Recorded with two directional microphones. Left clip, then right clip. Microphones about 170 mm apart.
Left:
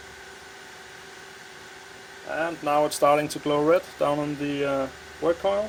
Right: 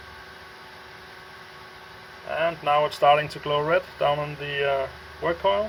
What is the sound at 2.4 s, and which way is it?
Speech, 55° left (ahead or behind).